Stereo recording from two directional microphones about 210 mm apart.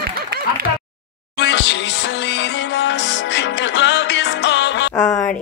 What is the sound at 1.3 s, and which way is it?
Music, 55° left (ahead or behind).